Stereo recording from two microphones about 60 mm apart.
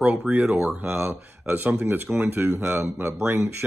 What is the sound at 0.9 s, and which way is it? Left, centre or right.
Speech, right.